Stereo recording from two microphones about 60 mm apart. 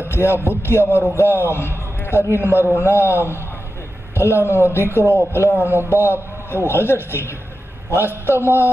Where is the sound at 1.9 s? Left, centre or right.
Left.